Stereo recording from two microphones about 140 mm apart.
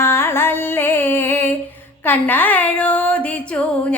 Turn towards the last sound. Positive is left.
turn(degrees=10)  # may be behind; listen again after turning